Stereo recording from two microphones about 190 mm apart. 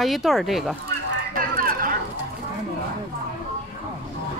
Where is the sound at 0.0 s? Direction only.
Centre (ahead or behind).